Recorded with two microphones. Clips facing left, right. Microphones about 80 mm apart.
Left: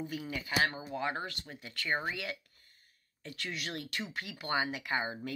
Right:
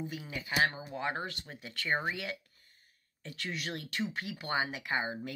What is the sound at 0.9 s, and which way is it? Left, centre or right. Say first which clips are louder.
Speech: even; right.